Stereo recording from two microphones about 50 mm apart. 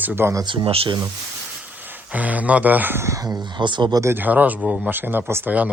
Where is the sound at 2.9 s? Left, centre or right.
Right.